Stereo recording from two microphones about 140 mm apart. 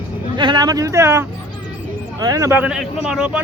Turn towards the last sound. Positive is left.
turn(degrees=-5)  # may be behind; listen again after turning